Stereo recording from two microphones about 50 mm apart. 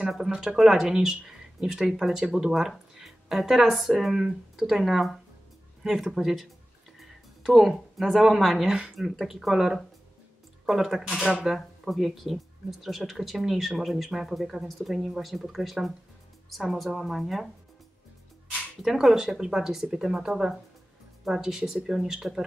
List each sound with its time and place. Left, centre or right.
0.2 s a woman's voice: centre
0.6 s a woman's voice: centre
18.8 s speech: centre